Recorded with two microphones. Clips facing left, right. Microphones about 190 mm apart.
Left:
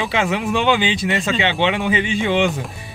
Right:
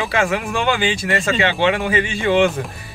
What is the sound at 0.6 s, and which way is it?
Speech, 50° right (ahead or behind).